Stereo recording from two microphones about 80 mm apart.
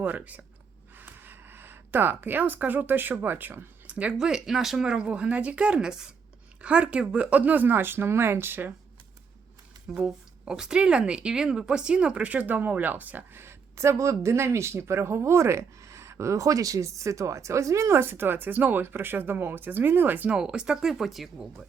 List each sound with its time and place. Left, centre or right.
0.0 s speech: right
9.9 s speech: centre; by 20.3 s right
20.3 s speech: centre